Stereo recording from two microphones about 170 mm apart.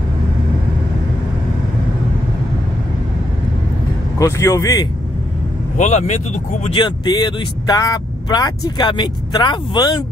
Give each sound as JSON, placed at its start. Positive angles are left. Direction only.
{"t": 4.2, "sound": "speech", "side_deg": 20}
{"t": 5.8, "sound": "speech", "side_deg": 45}
{"t": 6.7, "sound": "speech", "side_deg": 25}